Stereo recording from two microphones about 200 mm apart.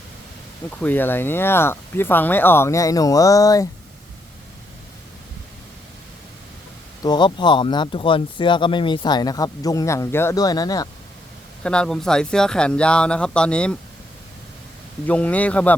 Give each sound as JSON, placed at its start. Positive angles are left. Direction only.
{"t": 0.8, "sound": "speech", "side_deg": 10}
{"t": 7.0, "sound": "speech", "side_deg": 20}
{"t": 11.6, "sound": "speech", "side_deg": 5}
{"t": 15.0, "sound": "speech", "side_deg": 5}